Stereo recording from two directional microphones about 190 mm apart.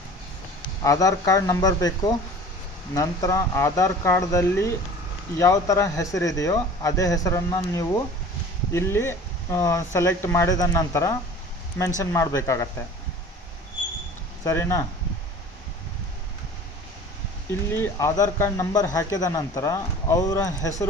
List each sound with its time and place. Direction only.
0.8 s speech: 15° left (ahead or behind)
14.4 s speech: 15° left (ahead or behind)
17.5 s speech: 15° left (ahead or behind)